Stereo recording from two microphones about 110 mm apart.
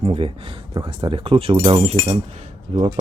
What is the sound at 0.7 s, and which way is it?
Speech, 40° right (ahead or behind).